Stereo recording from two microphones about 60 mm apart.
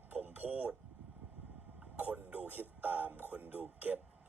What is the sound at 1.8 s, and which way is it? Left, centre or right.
A man's voice, right.